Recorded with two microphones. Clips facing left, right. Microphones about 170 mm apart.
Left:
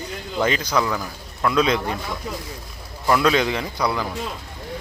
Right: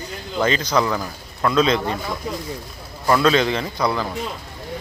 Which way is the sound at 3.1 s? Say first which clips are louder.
Right 2 dB; 10° left (ahead or behind).